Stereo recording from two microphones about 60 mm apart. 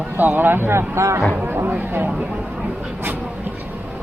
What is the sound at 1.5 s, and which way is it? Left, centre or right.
Speech, right.